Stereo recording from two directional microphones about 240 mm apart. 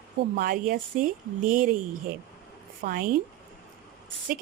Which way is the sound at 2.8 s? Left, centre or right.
Right.